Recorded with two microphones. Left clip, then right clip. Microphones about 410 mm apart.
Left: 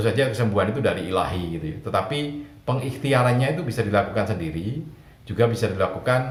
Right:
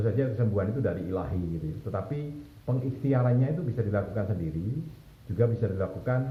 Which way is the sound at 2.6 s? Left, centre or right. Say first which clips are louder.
Left 7 dB; centre.